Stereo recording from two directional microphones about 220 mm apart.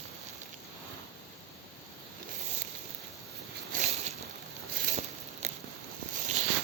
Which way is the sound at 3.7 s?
35° right (ahead or behind).